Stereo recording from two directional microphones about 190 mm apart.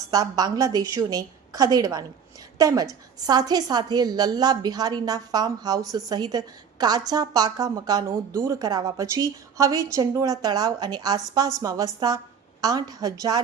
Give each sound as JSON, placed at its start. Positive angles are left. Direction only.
{"t": 0.1, "sound": "a woman's voice", "side_deg": -20}